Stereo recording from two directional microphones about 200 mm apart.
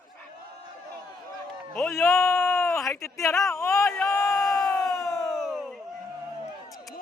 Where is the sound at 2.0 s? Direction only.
15° left (ahead or behind).